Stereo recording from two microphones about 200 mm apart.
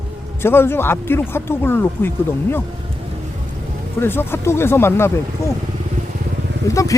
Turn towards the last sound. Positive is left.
turn(degrees=15)  # may be behind; listen again after turning